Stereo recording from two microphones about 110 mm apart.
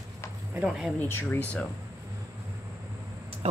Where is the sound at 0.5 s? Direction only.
10° right (ahead or behind).